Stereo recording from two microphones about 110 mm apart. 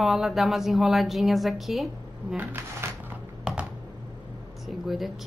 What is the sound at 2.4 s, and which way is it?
Speech, 20° right (ahead or behind).